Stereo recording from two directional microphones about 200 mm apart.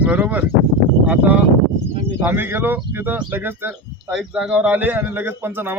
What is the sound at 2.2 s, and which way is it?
Speech, 10° right (ahead or behind).